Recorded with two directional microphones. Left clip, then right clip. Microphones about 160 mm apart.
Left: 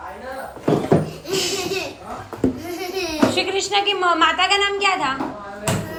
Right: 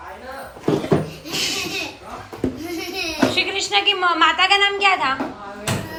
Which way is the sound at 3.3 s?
15° left (ahead or behind).